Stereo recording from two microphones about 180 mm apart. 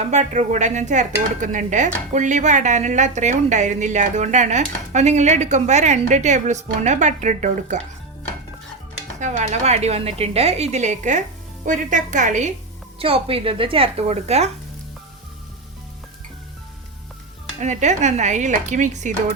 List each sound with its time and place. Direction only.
0.0 s dishes: 40° right (ahead or behind)
9.2 s dishes: 40° right (ahead or behind)
11.6 s a woman's voice: 45° right (ahead or behind)
13.0 s dishes: 30° right (ahead or behind)
17.6 s dishes: 40° right (ahead or behind)